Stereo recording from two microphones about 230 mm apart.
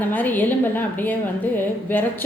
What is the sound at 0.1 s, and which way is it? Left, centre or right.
A woman's voice, centre.